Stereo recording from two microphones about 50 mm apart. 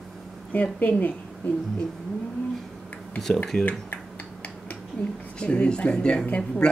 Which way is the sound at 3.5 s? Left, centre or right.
Left.